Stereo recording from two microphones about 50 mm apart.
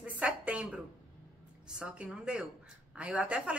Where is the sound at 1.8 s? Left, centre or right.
Right.